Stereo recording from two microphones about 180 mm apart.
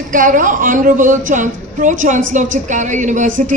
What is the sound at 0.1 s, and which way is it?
Speech, 45° right (ahead or behind).